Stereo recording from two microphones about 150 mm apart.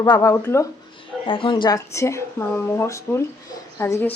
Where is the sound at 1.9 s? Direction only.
20° left (ahead or behind).